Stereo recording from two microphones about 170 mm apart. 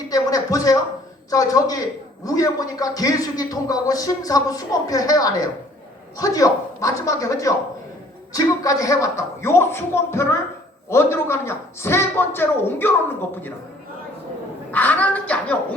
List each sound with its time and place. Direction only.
0.1 s a man's voice: 20° left (ahead or behind)
14.7 s a woman's voice: 10° left (ahead or behind)